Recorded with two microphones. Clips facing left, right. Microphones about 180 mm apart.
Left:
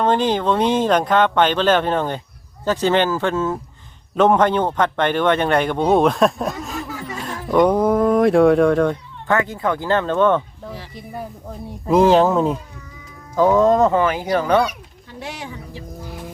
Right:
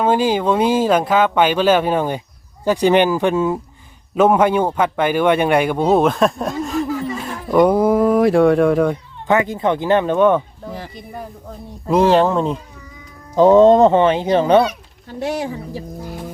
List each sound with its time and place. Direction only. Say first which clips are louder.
0.0 s a man's voice: right 2 dB; 10° right (ahead or behind)
11.9 s speech: even; centre (ahead or behind)
13.3 s speech: right 5 dB; 25° right (ahead or behind)
15.2 s speech: right 10 dB; 40° right (ahead or behind)